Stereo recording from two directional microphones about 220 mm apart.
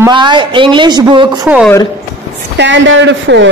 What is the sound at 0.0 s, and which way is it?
A woman's voice, 20° right (ahead or behind).